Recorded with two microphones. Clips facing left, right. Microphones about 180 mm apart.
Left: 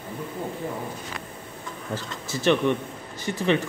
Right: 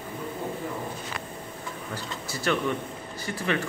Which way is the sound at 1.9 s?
20° left (ahead or behind).